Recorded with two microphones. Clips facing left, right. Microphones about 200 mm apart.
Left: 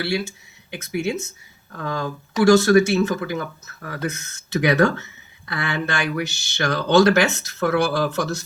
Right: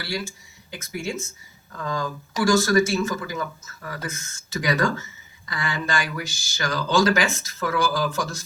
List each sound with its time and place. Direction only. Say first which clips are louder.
0.0 s speech: left 6 dB; 65° left (ahead or behind)